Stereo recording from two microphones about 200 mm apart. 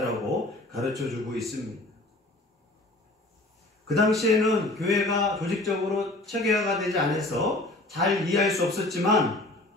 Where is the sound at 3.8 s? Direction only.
Centre (ahead or behind).